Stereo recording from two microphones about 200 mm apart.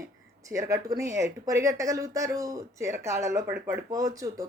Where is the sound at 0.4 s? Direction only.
15° right (ahead or behind).